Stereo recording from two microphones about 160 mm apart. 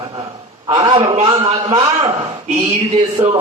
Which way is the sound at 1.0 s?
45° right (ahead or behind).